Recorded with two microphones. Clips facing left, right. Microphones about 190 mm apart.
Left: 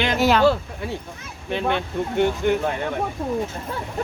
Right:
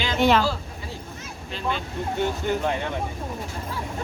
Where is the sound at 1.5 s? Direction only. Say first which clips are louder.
Left 6 dB; 65° left (ahead or behind).